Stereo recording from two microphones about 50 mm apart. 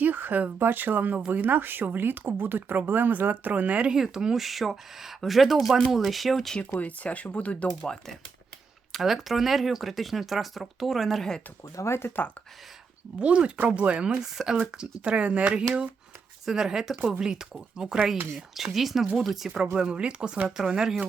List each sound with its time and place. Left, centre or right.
0.0 s speech: right
3.9 s speech: centre
4.4 s speech: centre
6.7 s speech: left
7.8 s speech: centre
8.9 s speech: centre
11.8 s speech: left
13.1 s speech: right
14.1 s speech: centre
16.5 s speech: centre
19.7 s speech: centre